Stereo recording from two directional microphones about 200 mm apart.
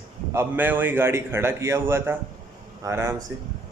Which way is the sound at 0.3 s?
10° right (ahead or behind).